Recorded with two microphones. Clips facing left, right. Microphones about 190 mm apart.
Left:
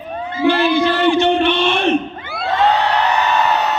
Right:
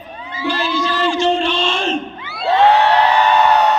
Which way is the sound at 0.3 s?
55° left (ahead or behind).